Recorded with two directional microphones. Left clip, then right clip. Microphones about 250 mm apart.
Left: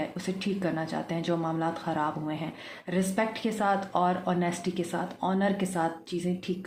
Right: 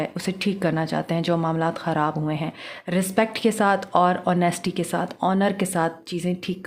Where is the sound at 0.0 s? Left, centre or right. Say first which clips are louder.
Right 7 dB; right.